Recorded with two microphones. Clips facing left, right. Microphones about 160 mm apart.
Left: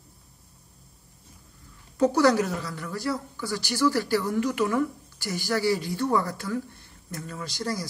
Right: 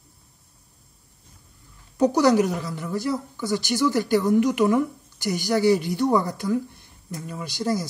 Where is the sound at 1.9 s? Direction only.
20° right (ahead or behind).